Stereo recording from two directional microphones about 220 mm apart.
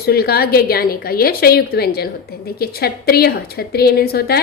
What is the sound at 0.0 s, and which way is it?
A woman's voice, 45° left (ahead or behind).